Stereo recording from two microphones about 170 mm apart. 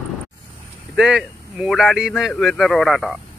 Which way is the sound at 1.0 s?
5° right (ahead or behind).